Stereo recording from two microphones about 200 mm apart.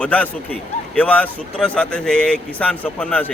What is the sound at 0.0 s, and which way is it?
A man's voice, 5° left (ahead or behind).